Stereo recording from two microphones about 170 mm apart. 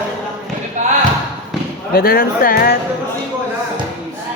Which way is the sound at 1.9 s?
60° left (ahead or behind).